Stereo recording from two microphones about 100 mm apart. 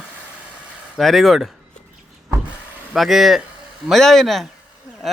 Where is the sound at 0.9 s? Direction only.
Centre (ahead or behind).